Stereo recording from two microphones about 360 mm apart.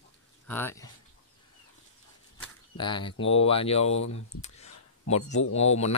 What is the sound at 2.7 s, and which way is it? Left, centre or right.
Speech, centre.